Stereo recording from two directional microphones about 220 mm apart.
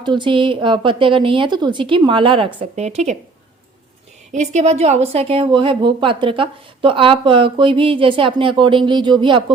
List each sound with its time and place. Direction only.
0.0 s a woman's voice: 20° right (ahead or behind)
4.3 s a woman's voice: 30° right (ahead or behind)